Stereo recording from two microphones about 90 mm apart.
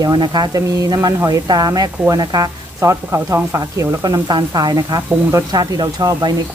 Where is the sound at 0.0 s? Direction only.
50° right (ahead or behind); by 4.0 s 35° right (ahead or behind).